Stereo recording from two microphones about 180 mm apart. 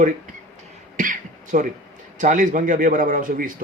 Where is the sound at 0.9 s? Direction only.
45° right (ahead or behind).